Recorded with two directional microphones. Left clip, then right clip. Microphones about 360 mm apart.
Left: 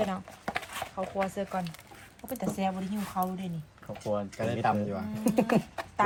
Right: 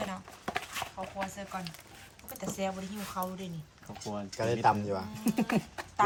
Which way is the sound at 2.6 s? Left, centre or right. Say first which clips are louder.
Left 2 dB; centre.